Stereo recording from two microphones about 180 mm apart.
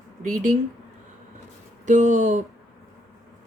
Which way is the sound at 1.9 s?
40° right (ahead or behind).